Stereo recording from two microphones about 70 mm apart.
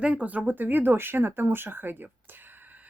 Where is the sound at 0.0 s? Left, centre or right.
Centre.